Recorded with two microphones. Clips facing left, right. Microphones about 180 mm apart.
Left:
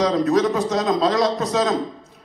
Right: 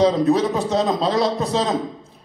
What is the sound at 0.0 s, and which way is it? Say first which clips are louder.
A man's voice: right 1 dB; 30° right (ahead or behind).